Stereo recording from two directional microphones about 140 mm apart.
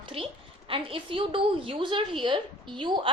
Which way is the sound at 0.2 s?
40° right (ahead or behind).